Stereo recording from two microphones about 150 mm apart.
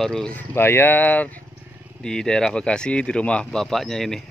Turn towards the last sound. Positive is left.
turn(degrees=5)  # may be behind; listen again after turning